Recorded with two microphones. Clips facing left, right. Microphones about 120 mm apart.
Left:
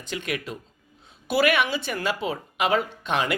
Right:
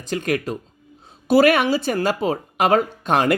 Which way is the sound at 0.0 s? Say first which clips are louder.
Right 8 dB; 40° right (ahead or behind).